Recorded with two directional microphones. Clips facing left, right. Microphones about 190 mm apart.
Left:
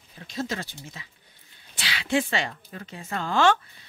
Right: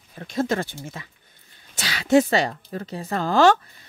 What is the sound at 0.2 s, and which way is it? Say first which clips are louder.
Speech: right 7 dB; 55° right (ahead or behind).